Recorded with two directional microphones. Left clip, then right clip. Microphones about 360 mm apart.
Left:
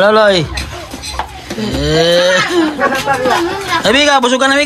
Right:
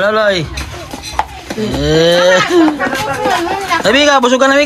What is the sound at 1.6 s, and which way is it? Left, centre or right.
Cattle, centre.